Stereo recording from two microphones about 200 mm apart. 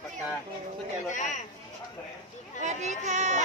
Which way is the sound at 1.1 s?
40° left (ahead or behind).